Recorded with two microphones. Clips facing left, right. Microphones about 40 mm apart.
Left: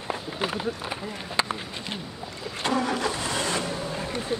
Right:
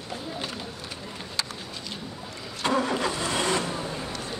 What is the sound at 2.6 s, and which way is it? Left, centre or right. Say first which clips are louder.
Vehicle: right 1 dB; centre.